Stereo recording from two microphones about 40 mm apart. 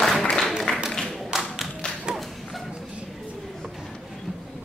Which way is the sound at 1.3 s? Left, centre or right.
Centre.